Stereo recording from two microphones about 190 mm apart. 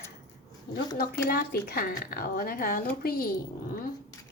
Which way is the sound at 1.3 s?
50° left (ahead or behind).